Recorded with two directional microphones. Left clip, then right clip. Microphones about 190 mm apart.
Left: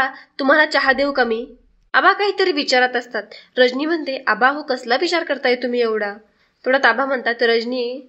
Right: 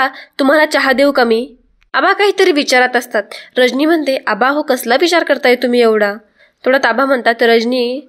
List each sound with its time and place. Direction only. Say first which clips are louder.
0.0 s a woman's voice: right 6 dB; 35° right (ahead or behind)